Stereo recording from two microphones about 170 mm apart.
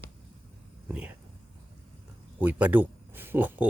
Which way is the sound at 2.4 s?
10° right (ahead or behind).